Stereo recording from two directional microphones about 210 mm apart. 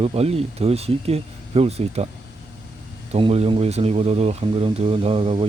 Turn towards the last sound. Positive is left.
turn(degrees=-25)  # may be behind; listen again after turning